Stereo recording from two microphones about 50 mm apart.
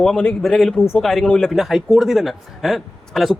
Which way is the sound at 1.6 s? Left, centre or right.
Centre.